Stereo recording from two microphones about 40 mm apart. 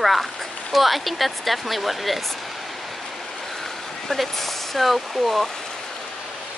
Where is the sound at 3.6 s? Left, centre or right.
Centre.